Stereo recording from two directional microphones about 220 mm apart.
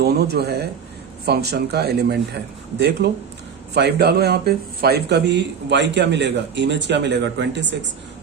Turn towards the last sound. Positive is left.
turn(degrees=-55)  # may be behind; listen again after turning